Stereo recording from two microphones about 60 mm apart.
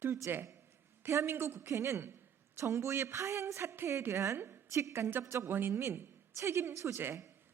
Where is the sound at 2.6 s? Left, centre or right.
Right.